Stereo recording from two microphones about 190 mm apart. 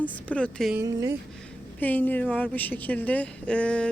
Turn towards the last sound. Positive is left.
turn(degrees=5)  # may be behind; listen again after turning